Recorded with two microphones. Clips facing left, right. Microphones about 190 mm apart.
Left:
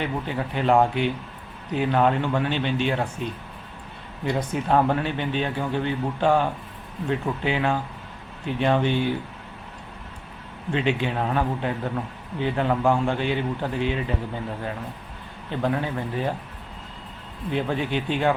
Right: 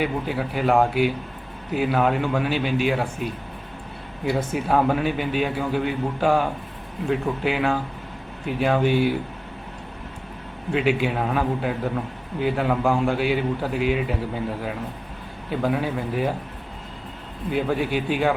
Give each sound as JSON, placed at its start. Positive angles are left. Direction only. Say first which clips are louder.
{"t": 0.0, "sound": "a man's voice", "louder": "right 3 dB", "side_deg": -5}
{"t": 10.7, "sound": "a man's voice", "louder": "right 3 dB", "side_deg": -5}
{"t": 15.4, "sound": "a man's voice", "louder": "right 2 dB", "side_deg": -5}
{"t": 17.5, "sound": "a man's voice", "louder": "right 2 dB", "side_deg": -5}